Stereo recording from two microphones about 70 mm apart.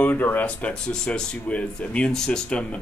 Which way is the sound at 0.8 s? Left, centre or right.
Centre.